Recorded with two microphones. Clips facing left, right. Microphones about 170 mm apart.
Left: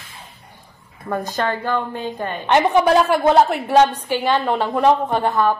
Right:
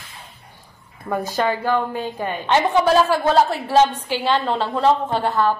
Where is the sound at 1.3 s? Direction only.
10° right (ahead or behind).